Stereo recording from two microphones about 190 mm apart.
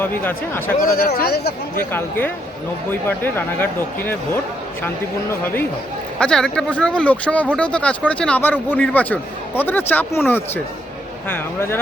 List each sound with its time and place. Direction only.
0.0 s speech: 10° left (ahead or behind)
0.8 s speech: 50° left (ahead or behind)
1.9 s speech: 10° left (ahead or behind)
5.3 s speech: 10° left (ahead or behind)